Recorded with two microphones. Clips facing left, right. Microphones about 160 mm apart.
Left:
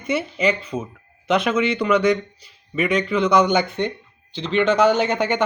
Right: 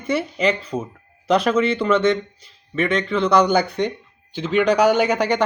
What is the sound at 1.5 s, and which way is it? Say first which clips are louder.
Speech: right 1 dB; 30° right (ahead or behind).